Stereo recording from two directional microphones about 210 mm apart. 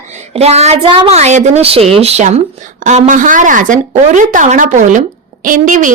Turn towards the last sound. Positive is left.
turn(degrees=-40)  # may be behind; listen again after turning